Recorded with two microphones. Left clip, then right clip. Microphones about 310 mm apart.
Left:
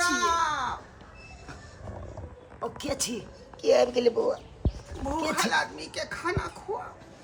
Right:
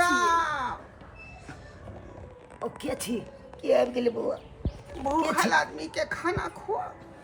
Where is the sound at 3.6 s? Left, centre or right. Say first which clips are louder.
Left 2 dB; centre.